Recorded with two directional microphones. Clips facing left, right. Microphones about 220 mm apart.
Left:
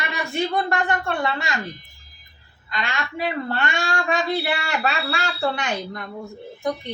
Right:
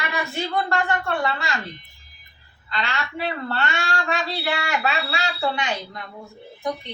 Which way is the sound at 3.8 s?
50° left (ahead or behind).